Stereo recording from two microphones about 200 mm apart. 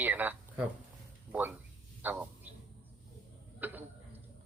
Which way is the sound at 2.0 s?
10° right (ahead or behind).